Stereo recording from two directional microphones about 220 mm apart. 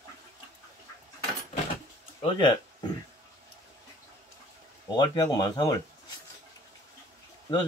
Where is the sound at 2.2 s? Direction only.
25° left (ahead or behind).